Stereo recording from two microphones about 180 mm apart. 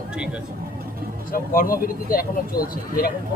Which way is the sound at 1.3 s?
50° left (ahead or behind).